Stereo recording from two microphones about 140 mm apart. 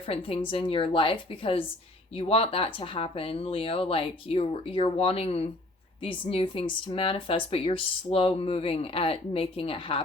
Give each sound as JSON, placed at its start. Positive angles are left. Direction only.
{"t": 0.0, "sound": "speech", "side_deg": 40}